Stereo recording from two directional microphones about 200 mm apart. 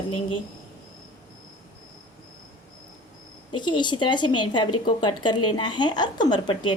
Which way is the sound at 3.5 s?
25° left (ahead or behind).